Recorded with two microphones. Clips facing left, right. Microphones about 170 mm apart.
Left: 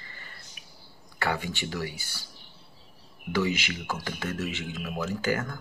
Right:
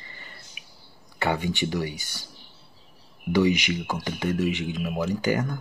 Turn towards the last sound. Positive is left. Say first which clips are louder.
# right 4 dB
turn(degrees=-15)  # may be behind; listen again after turning